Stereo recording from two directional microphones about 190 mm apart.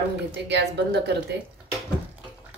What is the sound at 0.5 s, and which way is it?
Speech, 65° right (ahead or behind).